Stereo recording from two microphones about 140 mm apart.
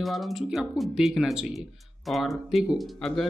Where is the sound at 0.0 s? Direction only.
Centre (ahead or behind).